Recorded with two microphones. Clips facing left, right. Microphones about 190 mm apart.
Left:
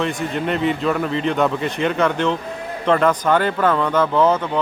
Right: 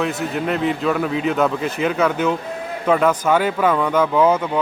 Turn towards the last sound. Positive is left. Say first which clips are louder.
# right 1 dB
turn(degrees=-10)  # may be behind; listen again after turning